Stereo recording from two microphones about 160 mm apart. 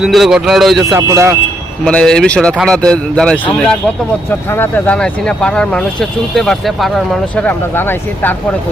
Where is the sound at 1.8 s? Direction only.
5° left (ahead or behind).